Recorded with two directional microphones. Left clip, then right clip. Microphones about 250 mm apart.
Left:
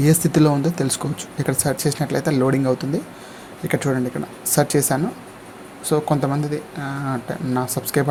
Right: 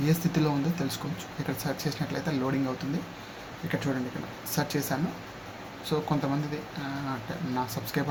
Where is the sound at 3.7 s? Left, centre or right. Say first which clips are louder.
Left 10 dB; left.